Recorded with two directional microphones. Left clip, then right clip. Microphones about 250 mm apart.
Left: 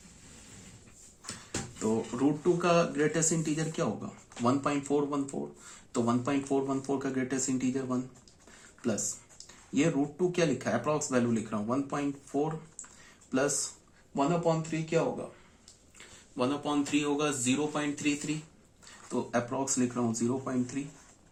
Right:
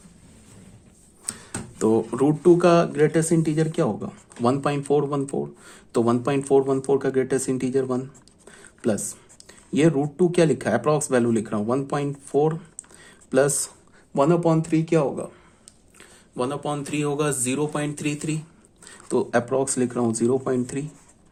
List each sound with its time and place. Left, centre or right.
1.8 s speech: right
9.7 s speech: right
16.4 s speech: right